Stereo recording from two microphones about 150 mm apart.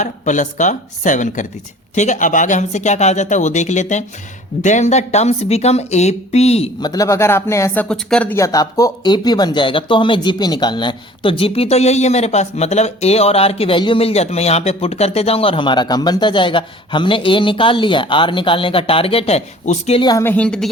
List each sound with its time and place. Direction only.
0.0 s speech: 55° left (ahead or behind)
6.8 s speech: 25° left (ahead or behind); by 8.4 s 5° left (ahead or behind)
8.4 s speech: 20° left (ahead or behind); by 20.0 s 50° left (ahead or behind)
20.0 s speech: 25° left (ahead or behind)
20.2 s speech: 10° left (ahead or behind)